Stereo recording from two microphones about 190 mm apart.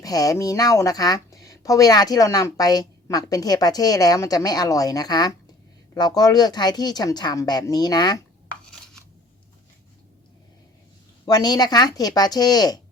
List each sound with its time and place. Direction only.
0.0 s speech: 20° left (ahead or behind)
11.3 s speech: 20° left (ahead or behind)